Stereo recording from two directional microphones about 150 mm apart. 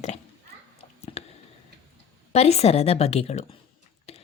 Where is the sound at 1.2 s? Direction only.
45° left (ahead or behind).